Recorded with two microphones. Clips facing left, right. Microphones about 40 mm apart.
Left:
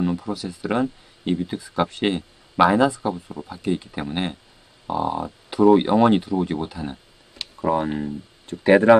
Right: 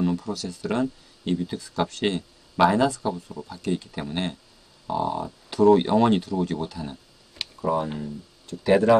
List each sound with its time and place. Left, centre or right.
0.0 s speech: centre
7.6 s speech: left